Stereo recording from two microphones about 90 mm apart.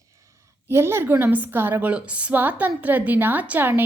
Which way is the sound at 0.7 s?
30° right (ahead or behind).